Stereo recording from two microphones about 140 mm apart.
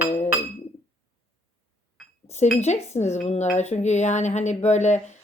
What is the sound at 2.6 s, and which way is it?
Speech, 50° left (ahead or behind).